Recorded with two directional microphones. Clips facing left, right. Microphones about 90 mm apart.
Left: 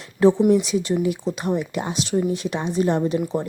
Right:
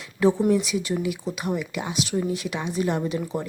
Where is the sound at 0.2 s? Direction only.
30° left (ahead or behind).